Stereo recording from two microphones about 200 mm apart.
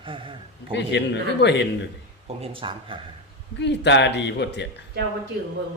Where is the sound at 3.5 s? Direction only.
60° left (ahead or behind).